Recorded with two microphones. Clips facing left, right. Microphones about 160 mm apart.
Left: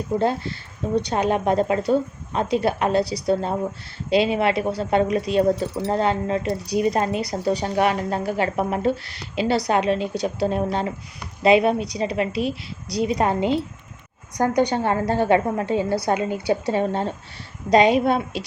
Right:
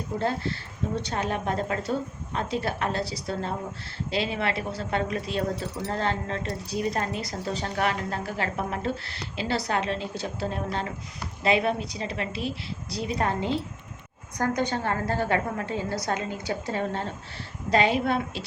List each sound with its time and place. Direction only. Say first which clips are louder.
0.2 s a woman's voice: left 5 dB; 15° left (ahead or behind)